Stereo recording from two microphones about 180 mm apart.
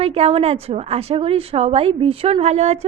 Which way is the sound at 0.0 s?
35° right (ahead or behind).